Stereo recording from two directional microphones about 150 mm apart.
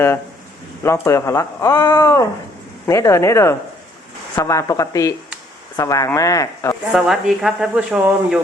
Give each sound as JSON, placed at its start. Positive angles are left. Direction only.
{"t": 0.8, "sound": "speech", "side_deg": 20}
{"t": 6.9, "sound": "speech", "side_deg": -5}